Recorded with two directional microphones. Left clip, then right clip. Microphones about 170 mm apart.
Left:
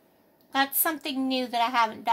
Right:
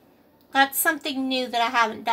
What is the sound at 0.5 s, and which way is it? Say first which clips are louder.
Speech: right 6 dB; 40° left (ahead or behind).